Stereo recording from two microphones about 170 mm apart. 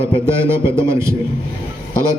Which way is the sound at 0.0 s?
15° right (ahead or behind).